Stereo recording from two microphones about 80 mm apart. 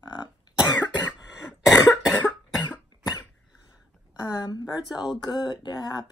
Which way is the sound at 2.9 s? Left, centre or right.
Left.